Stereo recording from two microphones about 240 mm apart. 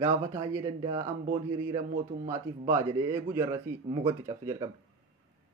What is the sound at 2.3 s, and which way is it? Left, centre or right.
Speech, centre.